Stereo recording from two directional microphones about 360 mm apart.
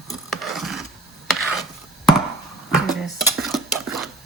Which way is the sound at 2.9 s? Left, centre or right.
Centre.